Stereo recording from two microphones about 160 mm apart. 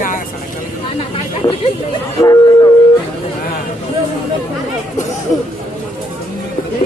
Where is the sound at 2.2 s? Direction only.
20° left (ahead or behind).